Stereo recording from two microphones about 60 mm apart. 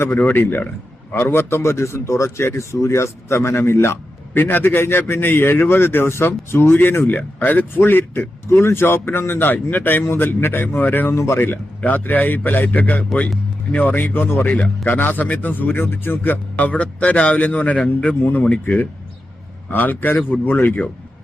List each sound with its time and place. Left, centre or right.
0.0 s a man's voice: left
11.8 s a man's voice: left
16.6 s a man's voice: left